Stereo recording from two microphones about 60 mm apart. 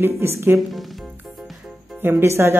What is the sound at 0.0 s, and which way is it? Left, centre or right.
Speech, right.